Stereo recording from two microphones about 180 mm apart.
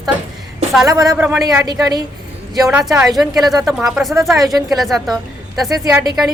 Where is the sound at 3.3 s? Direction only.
Centre (ahead or behind).